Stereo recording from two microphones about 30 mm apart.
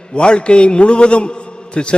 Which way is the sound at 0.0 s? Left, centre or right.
Left.